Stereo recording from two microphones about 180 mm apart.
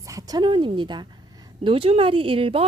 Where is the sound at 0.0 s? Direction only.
20° right (ahead or behind).